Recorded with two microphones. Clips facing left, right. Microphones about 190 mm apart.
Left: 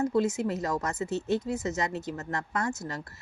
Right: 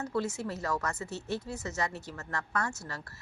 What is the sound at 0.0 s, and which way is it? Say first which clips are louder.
Speech: left 7 dB; 20° left (ahead or behind).